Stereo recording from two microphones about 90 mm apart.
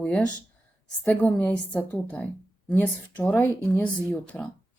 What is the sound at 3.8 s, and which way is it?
Speech, 15° left (ahead or behind).